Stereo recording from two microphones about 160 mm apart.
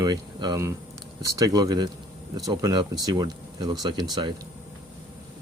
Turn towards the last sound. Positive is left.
turn(degrees=-25)  # may be behind; listen again after turning